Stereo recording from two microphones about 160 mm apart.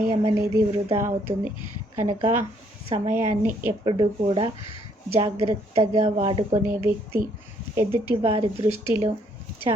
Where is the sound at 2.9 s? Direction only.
40° right (ahead or behind).